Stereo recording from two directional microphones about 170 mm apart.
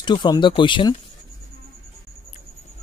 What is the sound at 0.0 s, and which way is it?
Speech, 25° left (ahead or behind).